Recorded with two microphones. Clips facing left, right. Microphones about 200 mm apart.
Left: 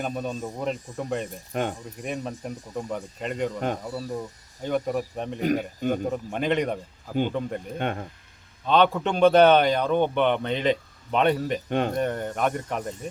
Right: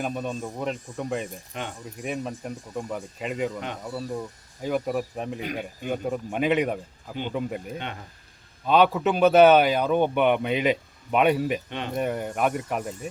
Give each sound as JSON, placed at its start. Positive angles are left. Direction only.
{"t": 0.0, "sound": "speech", "side_deg": 0}
{"t": 1.5, "sound": "speech", "side_deg": 50}
{"t": 2.0, "sound": "speech", "side_deg": 0}
{"t": 5.4, "sound": "speech", "side_deg": 45}
{"t": 5.9, "sound": "a man's voice", "side_deg": -5}